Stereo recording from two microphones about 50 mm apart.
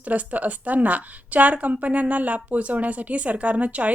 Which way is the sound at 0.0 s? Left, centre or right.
Right.